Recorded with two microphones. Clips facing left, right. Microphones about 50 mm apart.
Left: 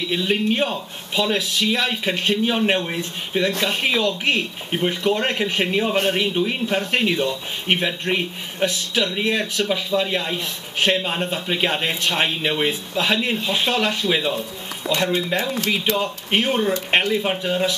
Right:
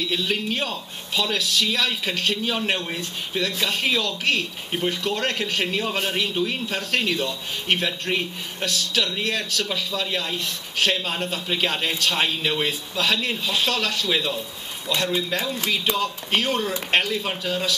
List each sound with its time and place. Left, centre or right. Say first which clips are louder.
0.0 s speech: left 4 dB; centre